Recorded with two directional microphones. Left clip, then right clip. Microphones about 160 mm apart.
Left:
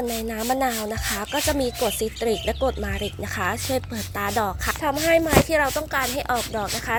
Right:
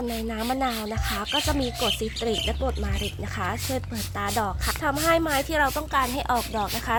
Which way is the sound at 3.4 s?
20° left (ahead or behind).